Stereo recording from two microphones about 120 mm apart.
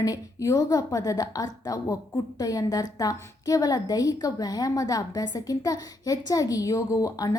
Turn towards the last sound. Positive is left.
turn(degrees=25)  # may be behind; listen again after turning